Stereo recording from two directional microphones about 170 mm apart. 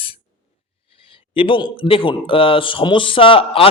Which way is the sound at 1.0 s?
30° left (ahead or behind).